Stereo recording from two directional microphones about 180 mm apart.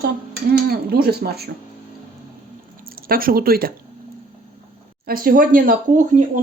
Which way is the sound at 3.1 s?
55° right (ahead or behind).